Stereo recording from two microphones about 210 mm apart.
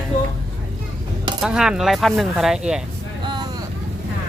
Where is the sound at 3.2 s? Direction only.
20° right (ahead or behind).